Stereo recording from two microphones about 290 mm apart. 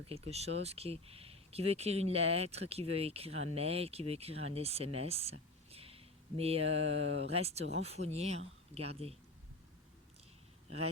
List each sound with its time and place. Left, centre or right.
0.0 s speech: right